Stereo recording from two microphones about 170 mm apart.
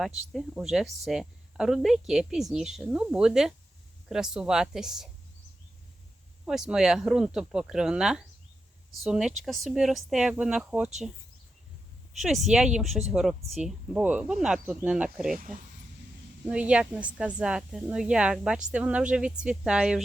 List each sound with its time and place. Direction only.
0.3 s a woman's voice: centre (ahead or behind)
6.4 s a woman's voice: 5° right (ahead or behind)
12.2 s a woman's voice: centre (ahead or behind)
15.3 s speech: 55° right (ahead or behind)
16.5 s a woman's voice: 5° right (ahead or behind)